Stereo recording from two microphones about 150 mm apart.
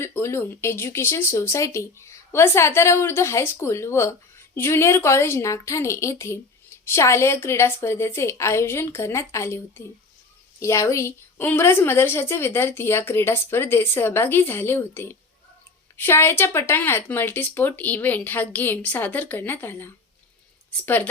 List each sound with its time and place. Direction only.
0.0 s a woman's voice: 15° left (ahead or behind)